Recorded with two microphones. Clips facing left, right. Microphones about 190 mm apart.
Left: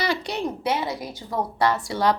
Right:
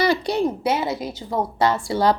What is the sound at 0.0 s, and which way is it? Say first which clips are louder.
Speech: right 6 dB; 35° right (ahead or behind).